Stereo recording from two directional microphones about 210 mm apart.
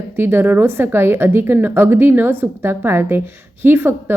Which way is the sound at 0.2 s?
10° right (ahead or behind).